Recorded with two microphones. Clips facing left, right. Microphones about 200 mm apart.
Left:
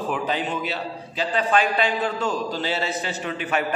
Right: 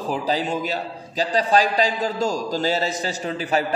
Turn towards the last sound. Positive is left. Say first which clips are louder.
# right 2 dB
turn(degrees=-35)  # may be behind; listen again after turning